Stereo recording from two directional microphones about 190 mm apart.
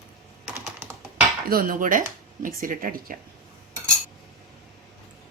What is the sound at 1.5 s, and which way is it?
Dishes, 50° right (ahead or behind).